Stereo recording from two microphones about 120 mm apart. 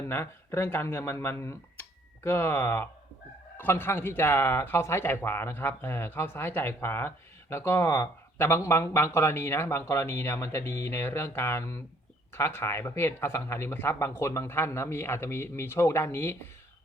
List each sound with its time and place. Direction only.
0.0 s speech: 20° left (ahead or behind)